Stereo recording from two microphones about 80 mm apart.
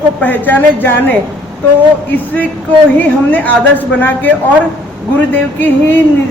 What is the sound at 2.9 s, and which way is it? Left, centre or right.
A woman's voice, left.